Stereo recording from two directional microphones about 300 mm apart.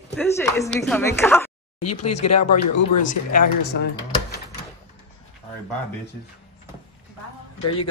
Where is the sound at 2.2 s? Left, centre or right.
Left.